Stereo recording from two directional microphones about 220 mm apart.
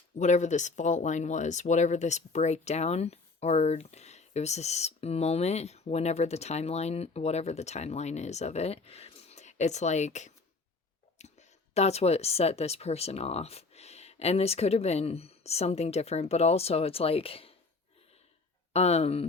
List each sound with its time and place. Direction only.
0.2 s speech: 35° left (ahead or behind)
18.7 s speech: 30° left (ahead or behind)